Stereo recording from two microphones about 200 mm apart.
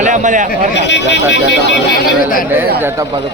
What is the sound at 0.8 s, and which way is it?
Speech, 60° left (ahead or behind).